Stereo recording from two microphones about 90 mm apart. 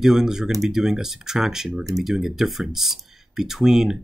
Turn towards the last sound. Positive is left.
turn(degrees=-5)  # may be behind; listen again after turning